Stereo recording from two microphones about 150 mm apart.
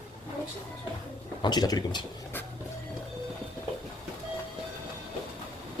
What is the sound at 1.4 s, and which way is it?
Speech, 25° left (ahead or behind).